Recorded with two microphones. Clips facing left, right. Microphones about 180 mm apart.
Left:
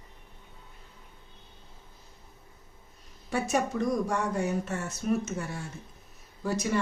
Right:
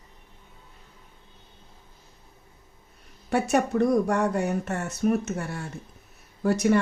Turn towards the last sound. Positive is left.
turn(degrees=-65)  # may be behind; listen again after turning